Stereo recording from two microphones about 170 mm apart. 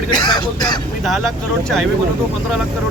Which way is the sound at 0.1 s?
25° left (ahead or behind).